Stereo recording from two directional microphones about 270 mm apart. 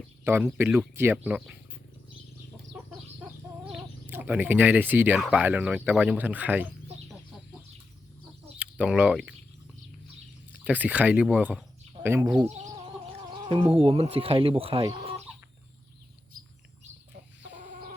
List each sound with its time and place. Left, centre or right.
0.3 s speech: centre
3.2 s speech: centre
8.5 s speech: centre
10.5 s speech: centre
17.6 s chicken: right